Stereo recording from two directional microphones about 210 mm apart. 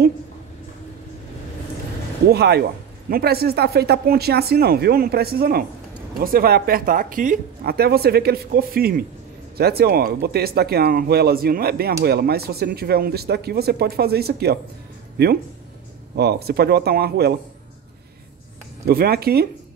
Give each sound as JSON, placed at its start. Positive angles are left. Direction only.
{"t": 2.3, "sound": "speech", "side_deg": -50}
{"t": 16.2, "sound": "speech", "side_deg": -50}
{"t": 18.9, "sound": "speech", "side_deg": -45}